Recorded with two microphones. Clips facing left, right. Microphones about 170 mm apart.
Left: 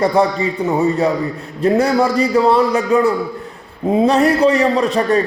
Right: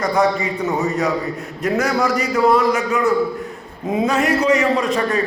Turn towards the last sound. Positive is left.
turn(degrees=35)  # may be behind; listen again after turning